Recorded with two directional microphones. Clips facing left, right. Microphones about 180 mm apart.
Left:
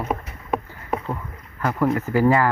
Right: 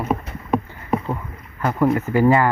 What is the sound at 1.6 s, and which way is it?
Speech, 15° right (ahead or behind).